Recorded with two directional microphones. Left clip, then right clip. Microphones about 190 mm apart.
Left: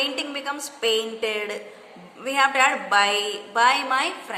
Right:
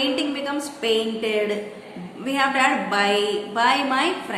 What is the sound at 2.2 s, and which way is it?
A woman's voice, 40° left (ahead or behind).